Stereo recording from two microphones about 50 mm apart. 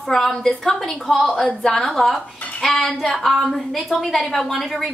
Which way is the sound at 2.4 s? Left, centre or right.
Left.